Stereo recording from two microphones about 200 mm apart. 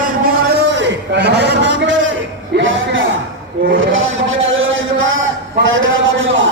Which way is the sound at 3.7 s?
80° right.